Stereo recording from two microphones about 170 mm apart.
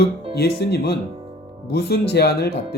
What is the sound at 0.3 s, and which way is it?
Speech, 70° left (ahead or behind).